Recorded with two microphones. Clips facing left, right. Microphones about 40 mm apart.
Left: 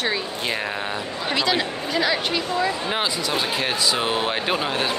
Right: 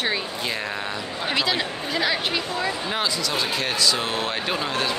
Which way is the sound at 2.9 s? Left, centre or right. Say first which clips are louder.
Left 1 dB; centre.